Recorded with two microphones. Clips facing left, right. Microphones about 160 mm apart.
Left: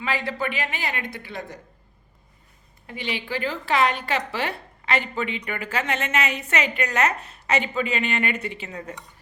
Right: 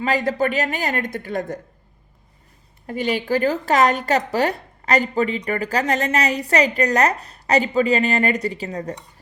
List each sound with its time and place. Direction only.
0.0 s speech: 45° right (ahead or behind)
2.8 s a woman's voice: 45° right (ahead or behind)